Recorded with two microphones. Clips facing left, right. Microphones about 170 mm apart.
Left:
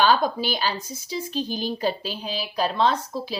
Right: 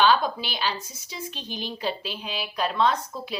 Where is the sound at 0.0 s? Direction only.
40° left (ahead or behind).